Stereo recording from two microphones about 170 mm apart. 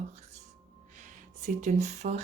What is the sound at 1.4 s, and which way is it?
Speech, 45° right (ahead or behind).